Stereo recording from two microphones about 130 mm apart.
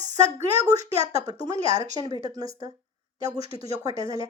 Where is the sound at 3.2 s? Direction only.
60° right (ahead or behind).